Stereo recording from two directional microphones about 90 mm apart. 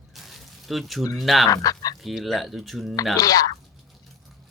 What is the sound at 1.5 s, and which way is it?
Speech, 40° left (ahead or behind).